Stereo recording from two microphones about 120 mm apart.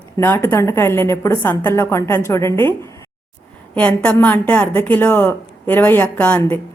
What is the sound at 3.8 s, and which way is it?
A woman's voice, 10° left (ahead or behind).